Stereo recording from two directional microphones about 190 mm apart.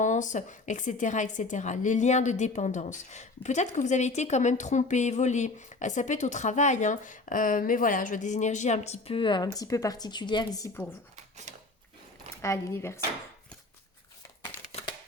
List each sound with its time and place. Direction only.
0.0 s a woman's voice: 40° left (ahead or behind); by 10.8 s 20° left (ahead or behind)
11.5 s a sound: 40° right (ahead or behind)
12.4 s speech: 15° left (ahead or behind)
14.4 s crumpling: 30° left (ahead or behind)